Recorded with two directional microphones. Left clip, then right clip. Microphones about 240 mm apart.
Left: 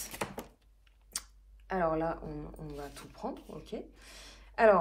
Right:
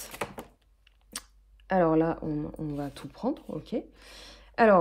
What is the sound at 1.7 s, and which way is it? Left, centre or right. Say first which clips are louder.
Speech: right 7 dB; right.